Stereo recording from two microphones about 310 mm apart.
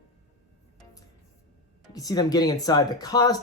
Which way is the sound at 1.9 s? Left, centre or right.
Centre.